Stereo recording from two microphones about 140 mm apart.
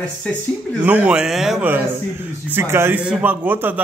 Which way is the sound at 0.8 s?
10° right (ahead or behind).